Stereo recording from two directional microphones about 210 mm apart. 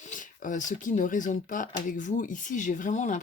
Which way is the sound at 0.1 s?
35° left (ahead or behind).